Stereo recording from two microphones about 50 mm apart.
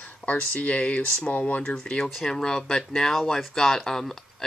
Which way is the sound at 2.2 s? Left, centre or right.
Centre.